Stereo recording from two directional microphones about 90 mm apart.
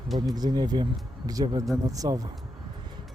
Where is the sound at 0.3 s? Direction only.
50° right (ahead or behind).